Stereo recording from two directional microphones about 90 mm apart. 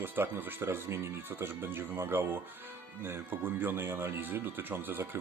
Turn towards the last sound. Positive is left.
turn(degrees=-25)  # may be behind; listen again after turning